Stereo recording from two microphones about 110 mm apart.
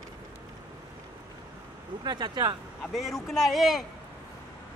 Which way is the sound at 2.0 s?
40° right (ahead or behind).